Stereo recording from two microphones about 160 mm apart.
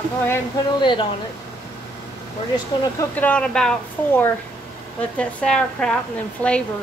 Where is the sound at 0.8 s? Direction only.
30° left (ahead or behind).